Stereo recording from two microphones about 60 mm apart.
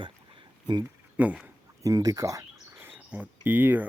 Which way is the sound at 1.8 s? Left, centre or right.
Right.